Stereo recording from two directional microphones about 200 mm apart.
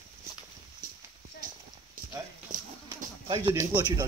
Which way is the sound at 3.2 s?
15° right (ahead or behind).